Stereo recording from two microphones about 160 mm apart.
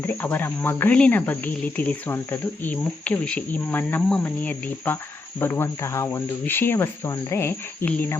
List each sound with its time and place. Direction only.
0.0 s cricket: 10° left (ahead or behind)